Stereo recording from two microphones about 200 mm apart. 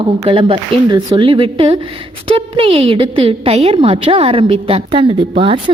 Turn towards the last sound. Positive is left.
turn(degrees=-25)  # may be behind; listen again after turning